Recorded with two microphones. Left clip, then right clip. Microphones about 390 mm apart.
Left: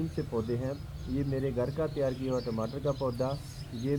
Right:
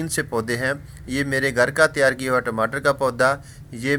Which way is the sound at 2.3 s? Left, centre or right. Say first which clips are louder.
Right 13 dB; right.